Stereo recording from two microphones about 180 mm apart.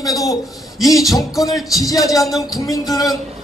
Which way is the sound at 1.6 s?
Centre (ahead or behind).